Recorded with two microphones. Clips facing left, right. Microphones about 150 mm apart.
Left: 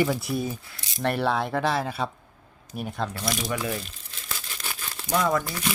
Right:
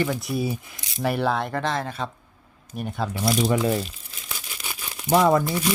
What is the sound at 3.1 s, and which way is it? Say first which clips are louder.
Speech: right 6 dB; 10° right (ahead or behind).